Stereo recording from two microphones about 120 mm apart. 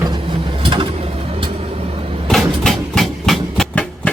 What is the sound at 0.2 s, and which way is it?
Mechanisms, 50° right (ahead or behind).